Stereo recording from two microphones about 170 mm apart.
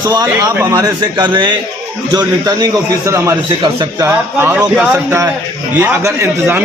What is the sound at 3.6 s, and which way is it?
Speech, 30° right (ahead or behind).